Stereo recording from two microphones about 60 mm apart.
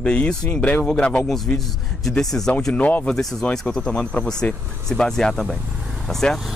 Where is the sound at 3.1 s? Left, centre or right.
Centre.